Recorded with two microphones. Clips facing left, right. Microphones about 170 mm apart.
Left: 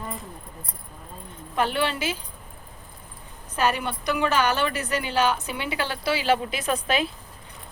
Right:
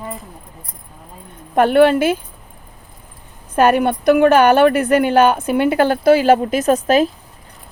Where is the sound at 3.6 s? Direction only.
55° right (ahead or behind).